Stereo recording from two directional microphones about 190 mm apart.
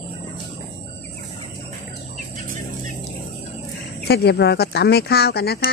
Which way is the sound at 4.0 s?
55° left (ahead or behind).